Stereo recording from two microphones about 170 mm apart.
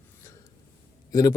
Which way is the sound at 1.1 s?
20° left (ahead or behind).